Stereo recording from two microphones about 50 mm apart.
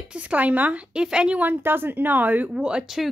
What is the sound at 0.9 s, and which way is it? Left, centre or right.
Speech, centre.